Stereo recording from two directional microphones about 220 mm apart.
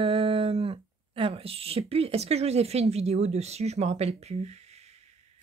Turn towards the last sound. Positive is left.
turn(degrees=-30)  # may be behind; listen again after turning